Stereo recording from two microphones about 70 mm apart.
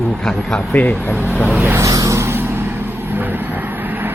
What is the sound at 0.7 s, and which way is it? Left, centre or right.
Speech, left.